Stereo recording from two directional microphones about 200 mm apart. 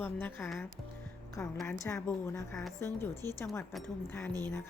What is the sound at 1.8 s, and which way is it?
Music, 15° left (ahead or behind).